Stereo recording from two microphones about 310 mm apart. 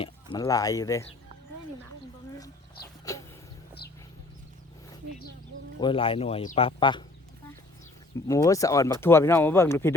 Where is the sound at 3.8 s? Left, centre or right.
Left.